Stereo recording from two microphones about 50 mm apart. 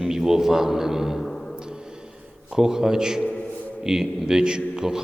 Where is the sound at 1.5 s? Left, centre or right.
Centre.